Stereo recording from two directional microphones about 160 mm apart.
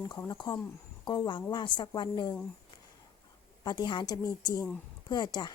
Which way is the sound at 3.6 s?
30° left (ahead or behind).